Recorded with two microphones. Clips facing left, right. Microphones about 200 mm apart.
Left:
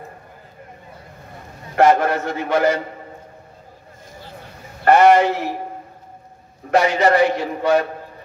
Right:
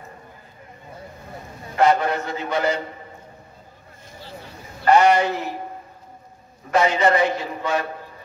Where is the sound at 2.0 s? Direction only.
50° left (ahead or behind).